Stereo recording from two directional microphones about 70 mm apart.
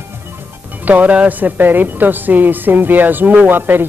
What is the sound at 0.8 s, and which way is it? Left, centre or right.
Speech, right.